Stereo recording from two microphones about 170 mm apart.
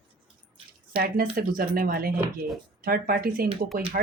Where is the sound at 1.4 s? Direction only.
60° right (ahead or behind).